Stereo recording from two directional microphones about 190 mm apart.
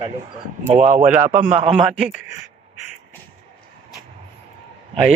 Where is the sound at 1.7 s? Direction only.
5° right (ahead or behind).